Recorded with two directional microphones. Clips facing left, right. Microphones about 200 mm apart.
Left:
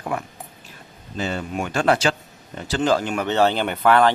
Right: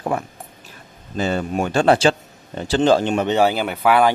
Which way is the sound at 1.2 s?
40° right (ahead or behind).